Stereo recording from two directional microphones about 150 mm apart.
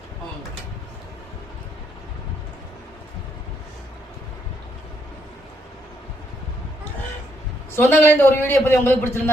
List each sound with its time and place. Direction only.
7.8 s a man's voice: 15° left (ahead or behind)